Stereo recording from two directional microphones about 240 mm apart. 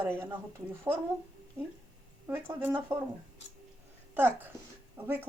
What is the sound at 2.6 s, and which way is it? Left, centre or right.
Speech, centre.